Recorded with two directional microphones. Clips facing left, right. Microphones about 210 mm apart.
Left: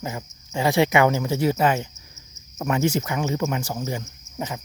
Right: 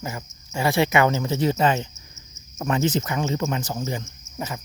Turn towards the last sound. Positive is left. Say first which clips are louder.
# left 1 dB
turn(degrees=15)  # may be behind; listen again after turning